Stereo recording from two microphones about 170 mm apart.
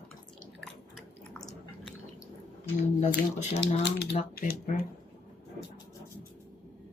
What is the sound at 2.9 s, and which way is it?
Speech, 45° left (ahead or behind).